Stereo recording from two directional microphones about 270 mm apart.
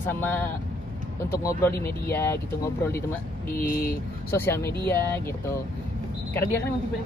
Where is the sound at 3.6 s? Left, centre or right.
Left.